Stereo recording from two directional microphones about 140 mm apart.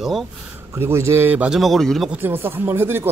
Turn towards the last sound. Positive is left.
turn(degrees=-15)  # may be behind; listen again after turning